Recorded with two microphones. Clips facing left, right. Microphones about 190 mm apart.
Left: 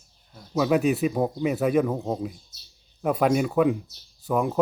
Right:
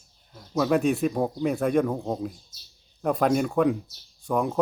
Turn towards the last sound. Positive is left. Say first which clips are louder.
# left 1 dB
turn(degrees=5)  # may be behind; listen again after turning